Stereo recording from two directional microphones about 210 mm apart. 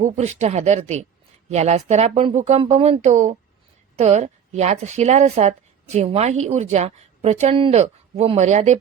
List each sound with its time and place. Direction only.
0.0 s a woman's voice: 35° right (ahead or behind)